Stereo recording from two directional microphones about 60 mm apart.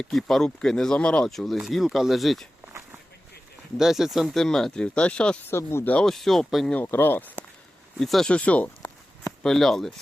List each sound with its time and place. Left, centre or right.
0.0 s speech: centre
0.9 s speech: centre
1.3 s speech: centre
3.8 s speech: centre
5.5 s speech: left
6.0 s speech: centre
6.8 s speech: left
7.9 s speech: centre
8.3 s speech: left
9.4 s speech: centre